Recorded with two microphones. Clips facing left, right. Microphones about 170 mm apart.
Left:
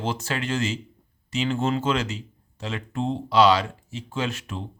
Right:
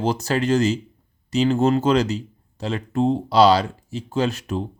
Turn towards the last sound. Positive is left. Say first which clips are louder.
# right 7 dB
turn(degrees=-40)  # may be behind; listen again after turning